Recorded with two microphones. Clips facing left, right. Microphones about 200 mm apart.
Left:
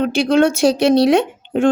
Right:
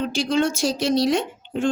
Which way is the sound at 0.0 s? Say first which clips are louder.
Left 7 dB; 60° left (ahead or behind).